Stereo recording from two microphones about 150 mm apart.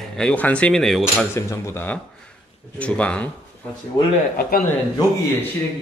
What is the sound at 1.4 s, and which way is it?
Speech, 15° left (ahead or behind).